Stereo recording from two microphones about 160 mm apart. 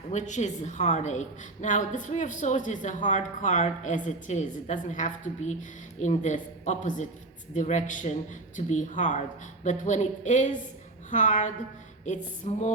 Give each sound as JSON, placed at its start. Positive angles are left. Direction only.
{"t": 0.1, "sound": "a woman's voice", "side_deg": 50}